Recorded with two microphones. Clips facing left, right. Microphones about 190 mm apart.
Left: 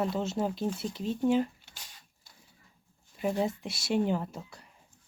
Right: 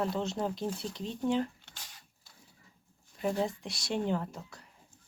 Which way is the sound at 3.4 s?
5° left (ahead or behind).